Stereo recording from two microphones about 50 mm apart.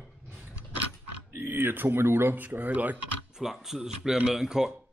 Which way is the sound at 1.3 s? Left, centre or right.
Right.